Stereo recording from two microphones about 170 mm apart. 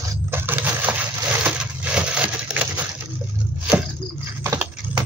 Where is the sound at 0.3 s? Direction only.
10° right (ahead or behind).